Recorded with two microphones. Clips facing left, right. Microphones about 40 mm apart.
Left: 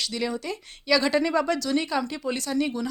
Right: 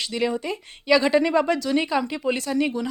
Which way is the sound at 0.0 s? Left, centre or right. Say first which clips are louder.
Right 4 dB; right.